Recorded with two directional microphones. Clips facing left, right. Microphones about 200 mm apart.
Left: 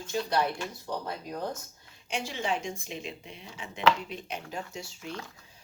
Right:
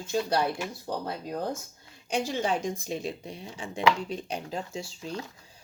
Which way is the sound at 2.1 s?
40° right (ahead or behind).